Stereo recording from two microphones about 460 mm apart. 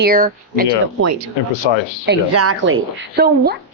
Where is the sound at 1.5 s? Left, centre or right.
Left.